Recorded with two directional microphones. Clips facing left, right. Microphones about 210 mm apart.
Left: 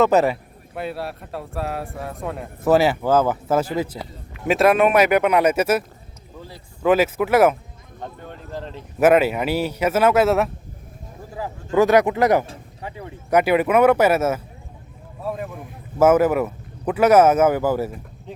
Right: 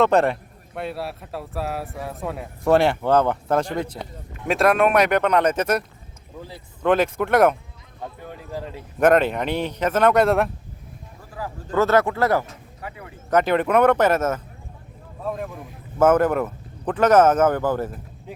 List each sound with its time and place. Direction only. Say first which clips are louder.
0.0 s a man's voice: left 1 dB; 5° left (ahead or behind)
6.8 s a man's voice: left 2 dB; 5° left (ahead or behind)
8.0 s speech: even; 5° right (ahead or behind)
9.0 s speech: left 2 dB; 5° left (ahead or behind)
11.3 s speech: left 4 dB; 15° left (ahead or behind)
12.5 s speech: left 2 dB; 30° left (ahead or behind)
13.3 s a man's voice: left 2 dB; 10° left (ahead or behind)